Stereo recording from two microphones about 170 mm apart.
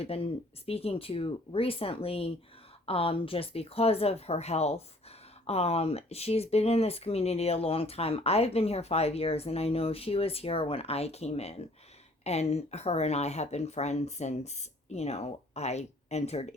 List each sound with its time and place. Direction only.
0.0 s speech: 35° left (ahead or behind)